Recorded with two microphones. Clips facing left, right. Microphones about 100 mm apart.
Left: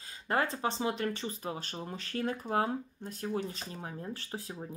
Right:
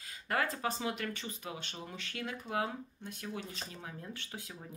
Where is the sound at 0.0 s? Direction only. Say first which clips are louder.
Left 3 dB; 30° left (ahead or behind).